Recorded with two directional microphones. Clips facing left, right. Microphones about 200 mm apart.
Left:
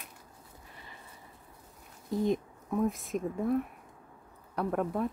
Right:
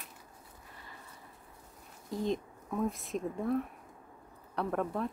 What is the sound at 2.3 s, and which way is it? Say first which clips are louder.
Speech: left 4 dB; 5° left (ahead or behind).